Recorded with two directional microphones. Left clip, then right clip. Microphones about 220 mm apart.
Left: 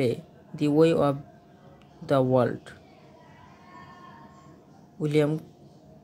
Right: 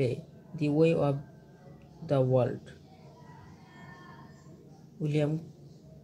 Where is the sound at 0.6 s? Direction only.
45° left (ahead or behind).